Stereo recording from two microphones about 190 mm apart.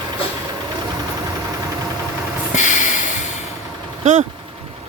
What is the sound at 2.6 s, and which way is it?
Snort, 40° left (ahead or behind).